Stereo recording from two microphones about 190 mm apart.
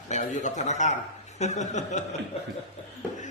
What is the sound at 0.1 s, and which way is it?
A man's voice, 40° left (ahead or behind).